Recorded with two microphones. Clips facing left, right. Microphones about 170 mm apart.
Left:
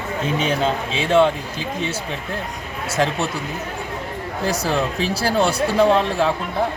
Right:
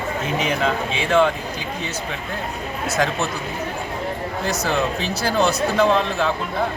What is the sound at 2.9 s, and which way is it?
Speech, 30° left (ahead or behind).